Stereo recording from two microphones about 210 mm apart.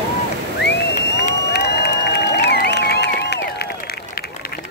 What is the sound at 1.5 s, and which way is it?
Music, 50° left (ahead or behind).